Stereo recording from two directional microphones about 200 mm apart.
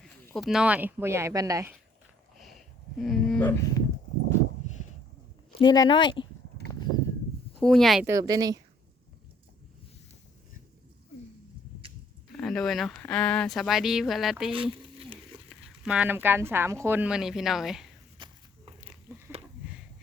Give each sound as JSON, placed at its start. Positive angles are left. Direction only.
{"t": 0.0, "sound": "speech", "side_deg": 0}
{"t": 2.4, "sound": "a sound", "side_deg": 0}
{"t": 5.5, "sound": "speech", "side_deg": 20}
{"t": 7.6, "sound": "speech", "side_deg": 0}
{"t": 8.0, "sound": "speech", "side_deg": -15}
{"t": 12.4, "sound": "speech", "side_deg": 0}
{"t": 14.5, "sound": "a sound", "side_deg": -25}
{"t": 15.4, "sound": "speech", "side_deg": -5}